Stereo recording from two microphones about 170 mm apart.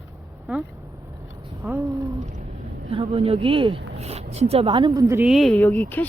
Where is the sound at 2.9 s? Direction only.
35° right (ahead or behind); by 5.2 s 15° right (ahead or behind).